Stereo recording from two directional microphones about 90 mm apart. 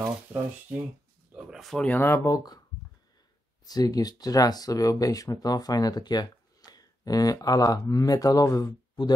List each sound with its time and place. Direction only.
0.0 s speech: 25° right (ahead or behind)
1.3 s a sound: 5° right (ahead or behind)
1.9 s speech: 25° left (ahead or behind)
2.2 s speech: 45° left (ahead or behind)
3.6 s speech: 45° left (ahead or behind)